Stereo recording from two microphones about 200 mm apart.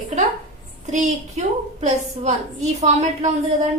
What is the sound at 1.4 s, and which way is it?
A woman's voice, 35° right (ahead or behind).